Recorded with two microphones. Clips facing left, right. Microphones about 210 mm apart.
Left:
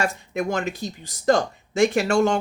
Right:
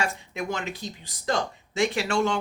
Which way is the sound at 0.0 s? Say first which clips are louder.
Left 5 dB; 45° left (ahead or behind).